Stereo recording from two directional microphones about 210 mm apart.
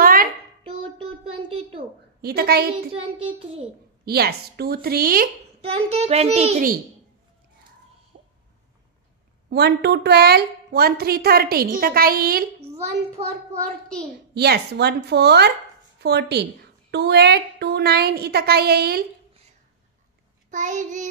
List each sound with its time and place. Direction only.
0.0 s a sound: 45° right (ahead or behind)
2.2 s a woman's voice: 50° right (ahead or behind)
4.0 s a woman's voice: 50° right (ahead or behind)
5.6 s a child's voice: 30° right (ahead or behind)
9.5 s a woman's voice: 50° right (ahead or behind)
14.3 s a woman's voice: 50° right (ahead or behind)
20.5 s child singing: 35° right (ahead or behind)